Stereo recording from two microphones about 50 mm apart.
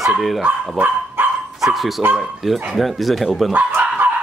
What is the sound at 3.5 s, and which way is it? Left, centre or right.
Bow-wow, right.